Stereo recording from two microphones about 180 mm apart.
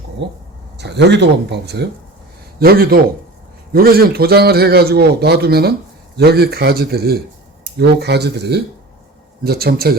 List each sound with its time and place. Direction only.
0.2 s speech: 70° right (ahead or behind)
2.6 s a man's voice: 55° right (ahead or behind)